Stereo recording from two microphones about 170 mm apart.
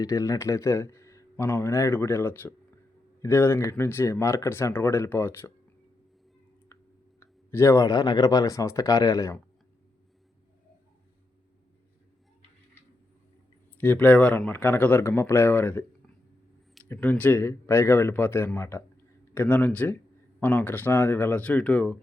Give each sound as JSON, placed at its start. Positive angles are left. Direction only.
{"t": 0.0, "sound": "speech", "side_deg": 20}
{"t": 7.2, "sound": "speech", "side_deg": 15}
{"t": 13.8, "sound": "speech", "side_deg": 10}
{"t": 16.9, "sound": "speech", "side_deg": 10}